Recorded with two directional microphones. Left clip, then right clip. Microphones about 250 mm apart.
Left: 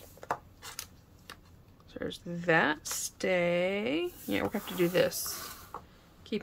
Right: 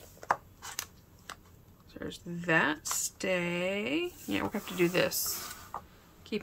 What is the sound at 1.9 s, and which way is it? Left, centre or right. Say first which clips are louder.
A woman's voice: left 3 dB; centre.